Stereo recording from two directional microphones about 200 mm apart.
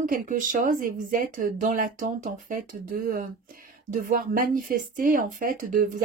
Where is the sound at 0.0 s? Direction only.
45° right (ahead or behind).